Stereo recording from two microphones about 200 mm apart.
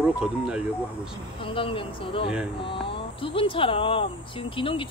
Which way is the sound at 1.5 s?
25° left (ahead or behind).